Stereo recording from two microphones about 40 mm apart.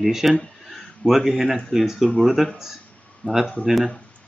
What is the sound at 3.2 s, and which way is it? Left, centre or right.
Speech, left.